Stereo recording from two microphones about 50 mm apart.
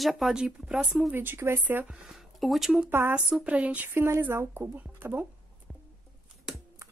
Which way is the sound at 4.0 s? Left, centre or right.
Right.